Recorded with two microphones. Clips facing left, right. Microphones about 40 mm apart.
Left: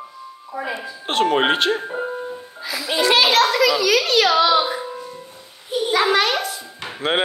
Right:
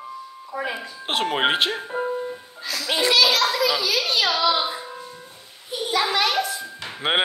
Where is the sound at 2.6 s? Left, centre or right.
Centre.